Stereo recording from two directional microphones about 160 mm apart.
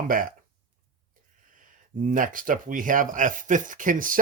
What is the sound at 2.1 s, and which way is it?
Speech, 60° right (ahead or behind).